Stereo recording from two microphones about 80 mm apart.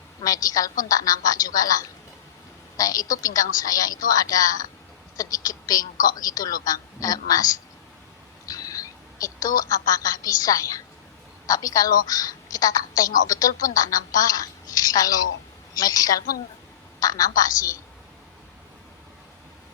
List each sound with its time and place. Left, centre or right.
0.2 s a woman's voice: left